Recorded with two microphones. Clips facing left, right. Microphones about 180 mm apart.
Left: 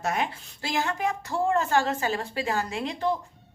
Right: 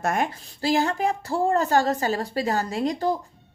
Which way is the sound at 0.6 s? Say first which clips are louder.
Right 6 dB; 35° right (ahead or behind).